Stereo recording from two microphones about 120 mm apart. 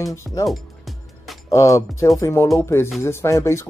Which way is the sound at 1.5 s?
25° left (ahead or behind).